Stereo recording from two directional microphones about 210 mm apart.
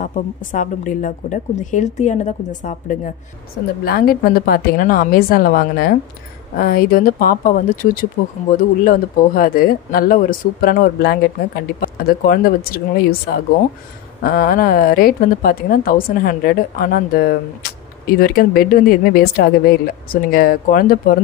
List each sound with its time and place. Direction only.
0.0 s a woman's voice: 40° left (ahead or behind)
3.8 s a woman's voice: 45° left (ahead or behind)